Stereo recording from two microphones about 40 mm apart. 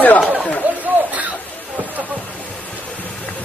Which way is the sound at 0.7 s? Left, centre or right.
Right.